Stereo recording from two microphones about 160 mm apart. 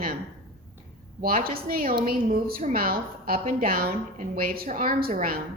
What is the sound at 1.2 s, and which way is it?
A woman's voice, 65° right (ahead or behind).